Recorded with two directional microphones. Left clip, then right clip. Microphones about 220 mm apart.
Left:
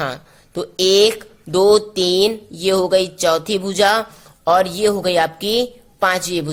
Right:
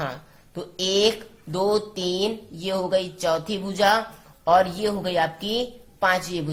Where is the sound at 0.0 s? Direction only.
40° left (ahead or behind).